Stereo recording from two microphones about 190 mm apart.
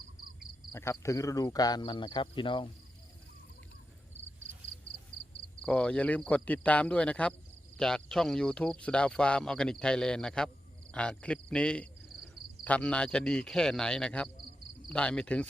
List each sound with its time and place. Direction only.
0.7 s speech: 15° left (ahead or behind)
5.6 s speech: 5° left (ahead or behind)